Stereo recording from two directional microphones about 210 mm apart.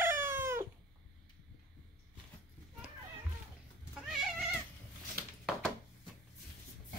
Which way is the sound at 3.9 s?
Centre (ahead or behind).